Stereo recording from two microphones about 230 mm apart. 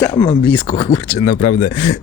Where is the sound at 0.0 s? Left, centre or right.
Centre.